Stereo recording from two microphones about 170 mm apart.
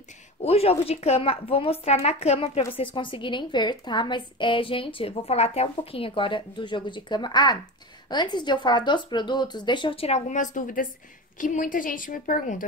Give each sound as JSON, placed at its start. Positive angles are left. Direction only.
{"t": 0.4, "sound": "a woman's voice", "side_deg": 35}